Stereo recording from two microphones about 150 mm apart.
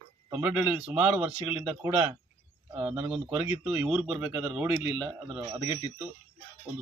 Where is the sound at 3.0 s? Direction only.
10° right (ahead or behind).